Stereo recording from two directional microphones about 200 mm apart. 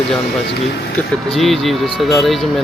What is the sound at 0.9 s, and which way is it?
Speech, centre (ahead or behind).